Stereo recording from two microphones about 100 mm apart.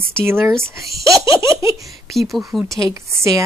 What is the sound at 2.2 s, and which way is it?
Speech, centre (ahead or behind).